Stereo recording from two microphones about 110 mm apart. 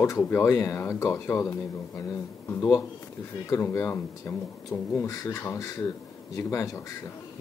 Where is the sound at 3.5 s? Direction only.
25° left (ahead or behind).